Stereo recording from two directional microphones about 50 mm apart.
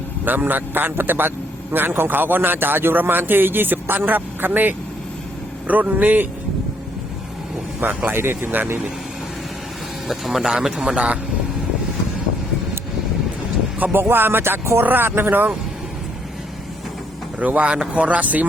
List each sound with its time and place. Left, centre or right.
0.3 s a man's voice: right
7.8 s a man's voice: right
8.2 s a man's voice: right
8.4 s a man's voice: right
10.1 s a man's voice: centre; by 11.2 s right
13.9 s a man's voice: right
17.4 s speech: right